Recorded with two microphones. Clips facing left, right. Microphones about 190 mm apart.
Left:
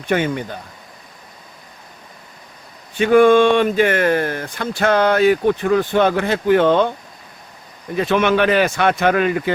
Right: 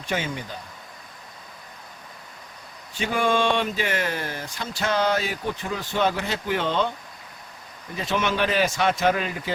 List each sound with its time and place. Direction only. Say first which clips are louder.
0.0 s speech: left 9 dB; 60° left (ahead or behind)
2.9 s speech: left 12 dB; 55° left (ahead or behind)
7.9 s speech: left 9 dB; 60° left (ahead or behind)